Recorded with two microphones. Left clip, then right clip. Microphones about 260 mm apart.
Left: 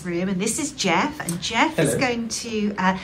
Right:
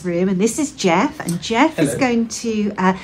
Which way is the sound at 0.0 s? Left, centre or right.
Centre.